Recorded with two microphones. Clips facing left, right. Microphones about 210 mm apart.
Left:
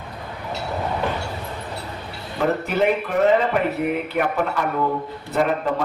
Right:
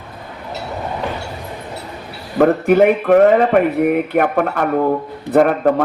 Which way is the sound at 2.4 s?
55° right (ahead or behind).